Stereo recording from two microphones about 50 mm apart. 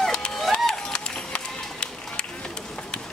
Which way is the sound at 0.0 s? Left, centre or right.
Centre.